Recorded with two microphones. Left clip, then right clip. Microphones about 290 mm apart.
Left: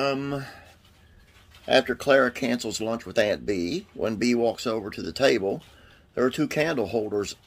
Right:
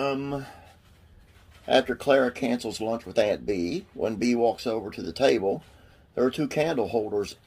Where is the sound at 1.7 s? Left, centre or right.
Left.